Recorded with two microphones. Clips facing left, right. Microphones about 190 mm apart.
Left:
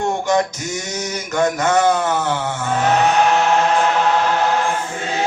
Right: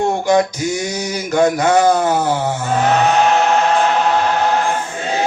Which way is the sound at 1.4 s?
35° right (ahead or behind).